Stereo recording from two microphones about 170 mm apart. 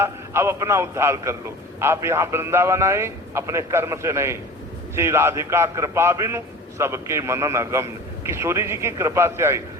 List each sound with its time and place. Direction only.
0.0 s a man's voice: 15° right (ahead or behind)